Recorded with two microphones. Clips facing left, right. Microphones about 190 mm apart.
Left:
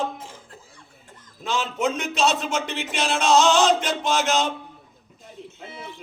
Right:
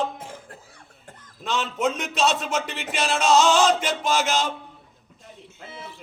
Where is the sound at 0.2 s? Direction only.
60° right (ahead or behind).